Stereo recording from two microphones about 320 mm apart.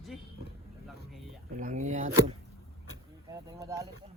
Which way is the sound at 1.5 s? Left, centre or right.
Right.